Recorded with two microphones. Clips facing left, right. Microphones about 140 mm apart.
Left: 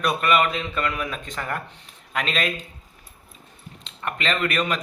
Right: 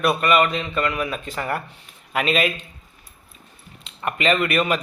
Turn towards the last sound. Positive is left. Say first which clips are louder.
# right 4 dB
turn(degrees=-5)  # may be behind; listen again after turning